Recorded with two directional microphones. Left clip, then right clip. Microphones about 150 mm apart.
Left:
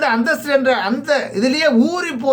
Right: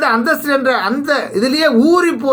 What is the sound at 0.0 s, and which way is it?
Speech, 30° left (ahead or behind).